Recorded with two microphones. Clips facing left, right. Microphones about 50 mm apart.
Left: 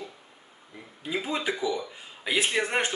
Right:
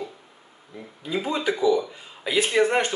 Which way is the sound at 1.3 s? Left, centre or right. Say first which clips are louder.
Right 5 dB; left.